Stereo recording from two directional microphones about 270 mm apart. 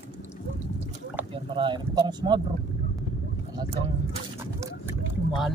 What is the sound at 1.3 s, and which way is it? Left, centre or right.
Speech, centre.